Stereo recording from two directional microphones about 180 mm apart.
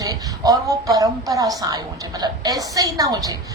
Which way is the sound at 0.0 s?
20° right (ahead or behind).